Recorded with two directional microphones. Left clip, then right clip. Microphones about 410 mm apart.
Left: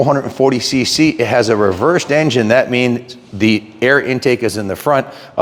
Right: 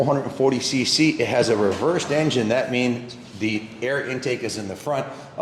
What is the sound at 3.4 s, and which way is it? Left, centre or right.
A man's voice, left.